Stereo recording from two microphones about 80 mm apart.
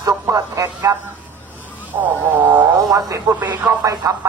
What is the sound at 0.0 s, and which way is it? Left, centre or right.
Speech, right.